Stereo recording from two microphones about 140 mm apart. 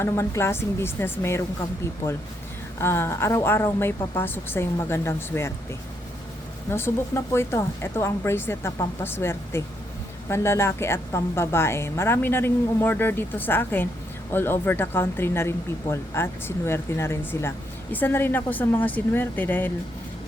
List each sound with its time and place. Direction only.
0.0 s a woman's voice: 20° left (ahead or behind)
2.8 s a woman's voice: 15° left (ahead or behind)
6.7 s a woman's voice: 20° left (ahead or behind)